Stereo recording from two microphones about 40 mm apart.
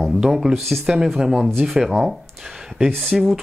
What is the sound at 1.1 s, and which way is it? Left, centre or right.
Speech, centre.